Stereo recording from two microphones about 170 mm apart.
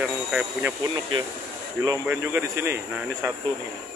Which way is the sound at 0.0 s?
5° right (ahead or behind).